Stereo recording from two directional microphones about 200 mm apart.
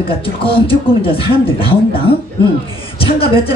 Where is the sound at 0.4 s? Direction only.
25° left (ahead or behind).